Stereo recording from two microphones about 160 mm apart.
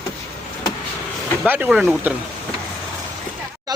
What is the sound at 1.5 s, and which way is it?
Speech, 10° right (ahead or behind).